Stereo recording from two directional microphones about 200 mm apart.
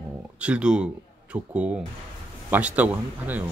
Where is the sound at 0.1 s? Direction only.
5° right (ahead or behind).